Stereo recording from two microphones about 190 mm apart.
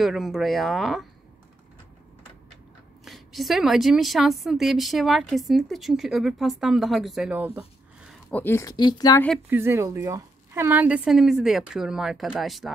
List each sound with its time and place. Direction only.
0.0 s a woman's voice: centre (ahead or behind)
3.1 s a woman's voice: centre (ahead or behind)
8.3 s speech: 10° left (ahead or behind)
9.5 s a woman's voice: 15° right (ahead or behind)